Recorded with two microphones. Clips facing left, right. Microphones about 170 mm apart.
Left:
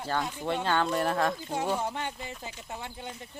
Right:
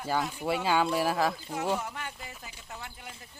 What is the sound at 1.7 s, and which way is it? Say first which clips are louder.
Speech: left 5 dB; 30° left (ahead or behind).